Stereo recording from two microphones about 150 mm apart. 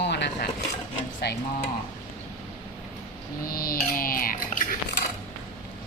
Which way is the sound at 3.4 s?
75° left (ahead or behind).